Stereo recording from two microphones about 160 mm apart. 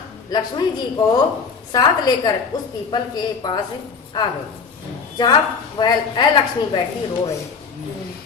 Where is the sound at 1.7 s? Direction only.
25° left (ahead or behind).